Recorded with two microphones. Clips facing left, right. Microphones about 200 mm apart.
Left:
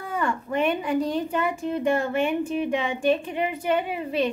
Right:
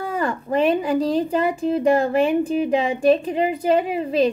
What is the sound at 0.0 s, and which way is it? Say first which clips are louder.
Speech: right 3 dB; 35° right (ahead or behind).